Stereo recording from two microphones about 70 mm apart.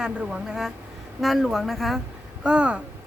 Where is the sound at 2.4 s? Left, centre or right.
Centre.